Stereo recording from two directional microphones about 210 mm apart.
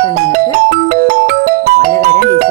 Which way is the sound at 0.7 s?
40° right (ahead or behind).